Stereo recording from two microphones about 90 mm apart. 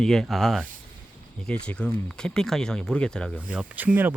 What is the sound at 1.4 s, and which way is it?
Speech, 10° left (ahead or behind).